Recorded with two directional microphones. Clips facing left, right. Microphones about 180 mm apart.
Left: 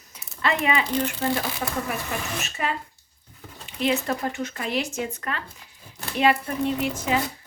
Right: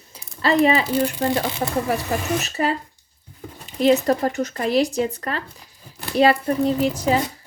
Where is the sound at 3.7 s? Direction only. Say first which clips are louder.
Right 8 dB; 40° right (ahead or behind).